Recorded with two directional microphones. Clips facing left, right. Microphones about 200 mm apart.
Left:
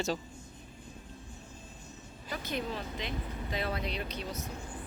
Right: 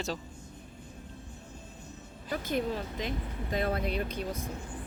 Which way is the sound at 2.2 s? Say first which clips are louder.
Right 5 dB; 50° right (ahead or behind).